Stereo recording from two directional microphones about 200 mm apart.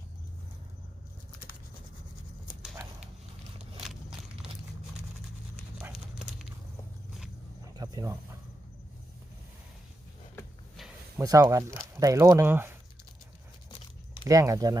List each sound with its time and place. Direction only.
7.8 s cricket: 20° right (ahead or behind)
11.2 s speech: 15° right (ahead or behind)
13.7 s a sound: 25° left (ahead or behind)
14.3 s speech: 15° right (ahead or behind)